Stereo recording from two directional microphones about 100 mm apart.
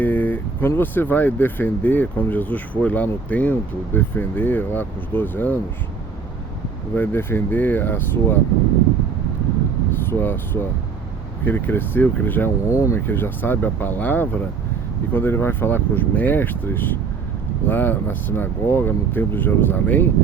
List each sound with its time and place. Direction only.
0.0 s vehicle: 20° left (ahead or behind)
0.8 s speech: 20° left (ahead or behind)
6.9 s speech: 20° left (ahead or behind)
9.9 s speech: 20° left (ahead or behind)
12.6 s speech: 30° left (ahead or behind)